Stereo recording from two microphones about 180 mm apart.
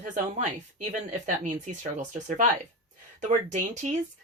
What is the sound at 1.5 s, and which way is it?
Speech, 40° right (ahead or behind).